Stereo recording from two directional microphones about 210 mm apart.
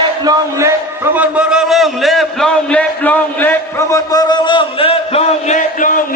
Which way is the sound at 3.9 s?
20° left (ahead or behind).